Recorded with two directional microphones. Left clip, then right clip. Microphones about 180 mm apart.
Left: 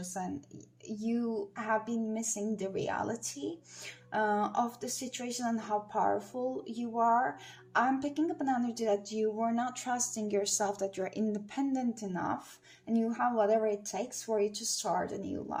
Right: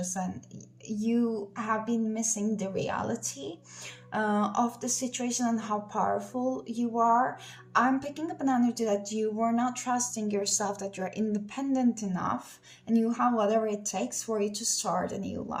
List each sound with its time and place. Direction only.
0.9 s a woman's voice: 20° left (ahead or behind)